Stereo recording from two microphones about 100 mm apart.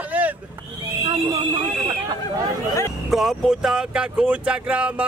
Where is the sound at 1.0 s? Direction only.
50° right (ahead or behind).